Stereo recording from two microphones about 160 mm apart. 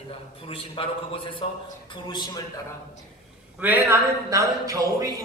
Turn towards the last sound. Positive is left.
turn(degrees=-20)  # may be behind; listen again after turning